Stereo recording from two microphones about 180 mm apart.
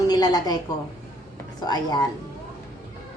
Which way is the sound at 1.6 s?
20° left (ahead or behind).